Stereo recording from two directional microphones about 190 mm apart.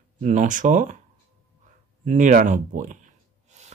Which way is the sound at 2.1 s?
40° right (ahead or behind).